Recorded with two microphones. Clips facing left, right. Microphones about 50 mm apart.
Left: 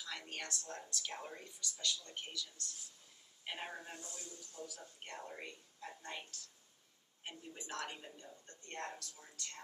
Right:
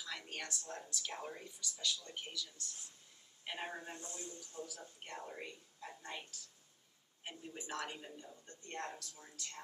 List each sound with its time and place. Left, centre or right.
0.0 s speech: centre
3.9 s a man's voice: right
5.0 s speech: centre
7.2 s a man's voice: centre